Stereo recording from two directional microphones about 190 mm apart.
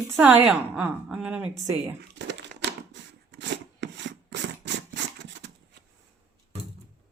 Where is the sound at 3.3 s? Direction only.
70° right (ahead or behind).